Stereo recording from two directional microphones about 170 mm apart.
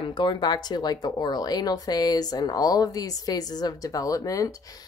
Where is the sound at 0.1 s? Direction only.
25° left (ahead or behind).